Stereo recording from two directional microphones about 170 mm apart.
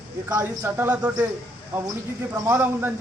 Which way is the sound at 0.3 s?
20° right (ahead or behind).